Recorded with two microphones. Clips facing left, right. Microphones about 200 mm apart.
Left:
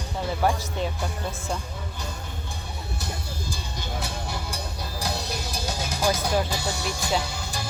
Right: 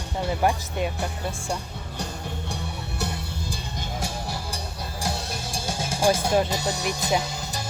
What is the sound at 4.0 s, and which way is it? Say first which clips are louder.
Music: right 2 dB; 35° right (ahead or behind).